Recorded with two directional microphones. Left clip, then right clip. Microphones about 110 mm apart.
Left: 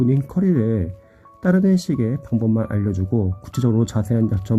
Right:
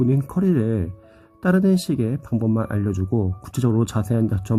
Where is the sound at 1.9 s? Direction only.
10° right (ahead or behind).